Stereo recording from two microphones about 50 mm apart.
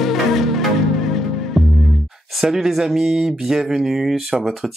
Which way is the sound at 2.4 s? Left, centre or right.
Centre.